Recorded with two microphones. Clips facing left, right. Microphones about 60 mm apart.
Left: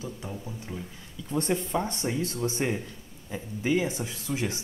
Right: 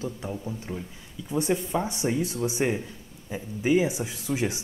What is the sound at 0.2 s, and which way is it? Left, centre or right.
Speech, centre.